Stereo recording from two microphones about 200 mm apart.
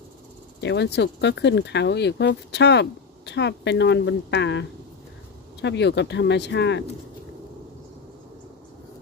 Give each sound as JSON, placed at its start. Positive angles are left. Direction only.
{"t": 0.6, "sound": "speech", "side_deg": 60}